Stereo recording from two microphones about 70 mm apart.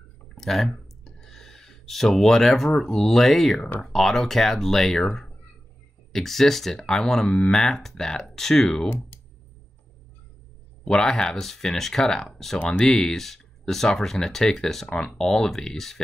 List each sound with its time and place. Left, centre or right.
0.4 s speech: centre
8.8 s speech: left
10.9 s speech: centre